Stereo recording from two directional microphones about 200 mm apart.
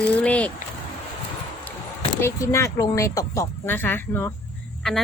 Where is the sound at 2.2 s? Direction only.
15° left (ahead or behind).